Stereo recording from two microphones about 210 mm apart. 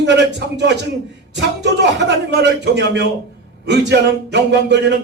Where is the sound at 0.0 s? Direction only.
55° right (ahead or behind).